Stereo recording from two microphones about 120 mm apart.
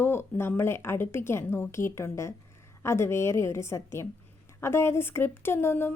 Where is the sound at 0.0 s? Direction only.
20° left (ahead or behind).